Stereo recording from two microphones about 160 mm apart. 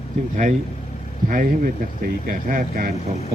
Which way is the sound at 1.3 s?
55° right (ahead or behind).